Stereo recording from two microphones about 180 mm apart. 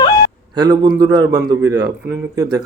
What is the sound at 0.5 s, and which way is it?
A man's voice, 20° right (ahead or behind).